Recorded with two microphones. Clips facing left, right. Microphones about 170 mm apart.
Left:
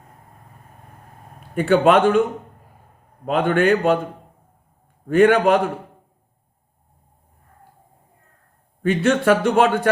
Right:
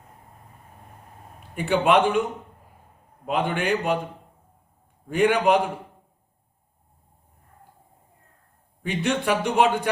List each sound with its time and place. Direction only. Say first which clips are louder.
1.5 s a man's voice: left 5 dB; 55° left (ahead or behind)
3.3 s a man's voice: left 7 dB; 55° left (ahead or behind)
8.8 s a man's voice: left 7 dB; 50° left (ahead or behind)